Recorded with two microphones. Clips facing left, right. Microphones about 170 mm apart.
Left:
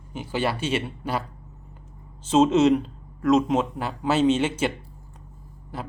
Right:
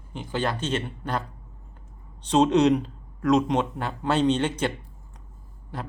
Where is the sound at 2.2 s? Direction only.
5° left (ahead or behind).